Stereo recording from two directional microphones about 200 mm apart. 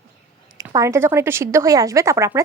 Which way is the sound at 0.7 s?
15° right (ahead or behind).